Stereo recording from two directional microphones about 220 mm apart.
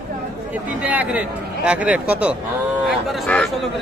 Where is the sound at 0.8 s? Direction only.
5° right (ahead or behind).